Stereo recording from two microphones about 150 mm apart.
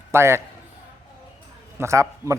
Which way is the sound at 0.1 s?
15° right (ahead or behind).